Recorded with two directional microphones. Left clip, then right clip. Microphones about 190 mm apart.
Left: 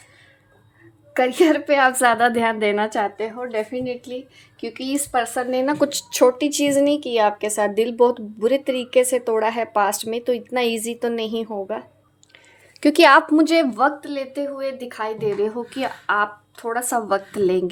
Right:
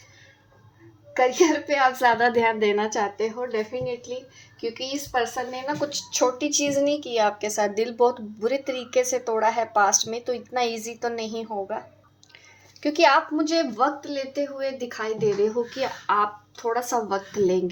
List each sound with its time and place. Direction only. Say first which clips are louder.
1.1 s a woman's voice: left 3 dB; 45° left (ahead or behind)
3.7 s a woman's voice: left 2 dB; 50° left (ahead or behind)
12.8 s a woman's voice: left 6 dB; 55° left (ahead or behind)
13.7 s a woman's voice: left 4 dB; 35° left (ahead or behind)